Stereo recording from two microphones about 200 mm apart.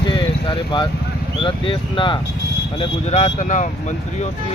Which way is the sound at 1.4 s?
25° left (ahead or behind).